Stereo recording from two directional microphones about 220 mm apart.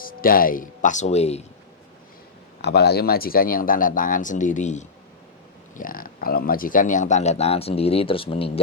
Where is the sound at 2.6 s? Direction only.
50° left (ahead or behind).